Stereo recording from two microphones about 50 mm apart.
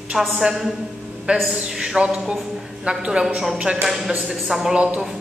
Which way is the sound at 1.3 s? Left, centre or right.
Right.